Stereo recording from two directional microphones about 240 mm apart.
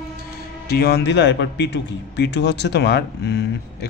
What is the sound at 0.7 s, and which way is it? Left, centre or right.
Speech, left.